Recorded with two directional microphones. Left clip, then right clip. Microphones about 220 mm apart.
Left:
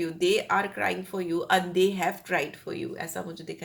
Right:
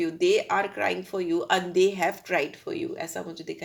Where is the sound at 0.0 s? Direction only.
25° right (ahead or behind).